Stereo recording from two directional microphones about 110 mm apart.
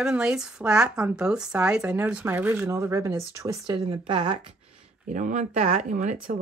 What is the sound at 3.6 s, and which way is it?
Speech, 50° right (ahead or behind).